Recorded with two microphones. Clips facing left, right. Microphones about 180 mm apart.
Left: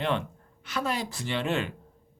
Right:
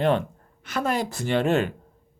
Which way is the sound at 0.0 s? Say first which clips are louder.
Right 7 dB; 40° right (ahead or behind).